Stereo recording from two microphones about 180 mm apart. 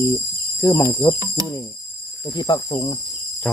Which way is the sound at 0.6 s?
15° left (ahead or behind).